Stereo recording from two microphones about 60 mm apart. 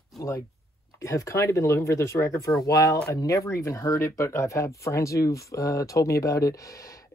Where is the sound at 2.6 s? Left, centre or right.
Left.